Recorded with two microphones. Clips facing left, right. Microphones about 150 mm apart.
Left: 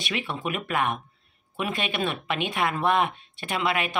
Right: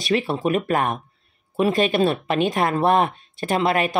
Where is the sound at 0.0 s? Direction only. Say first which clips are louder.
Right 9 dB; 40° right (ahead or behind).